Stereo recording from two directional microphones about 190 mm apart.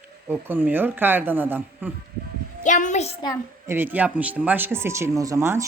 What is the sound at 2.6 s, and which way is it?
Speech, 40° left (ahead or behind).